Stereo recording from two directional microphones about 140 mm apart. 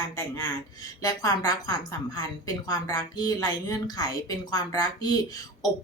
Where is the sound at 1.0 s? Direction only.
25° left (ahead or behind).